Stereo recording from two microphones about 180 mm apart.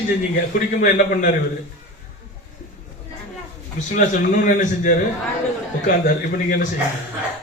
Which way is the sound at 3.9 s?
45° left (ahead or behind).